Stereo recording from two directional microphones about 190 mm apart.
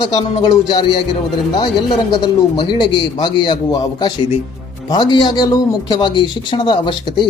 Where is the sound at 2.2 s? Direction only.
25° left (ahead or behind).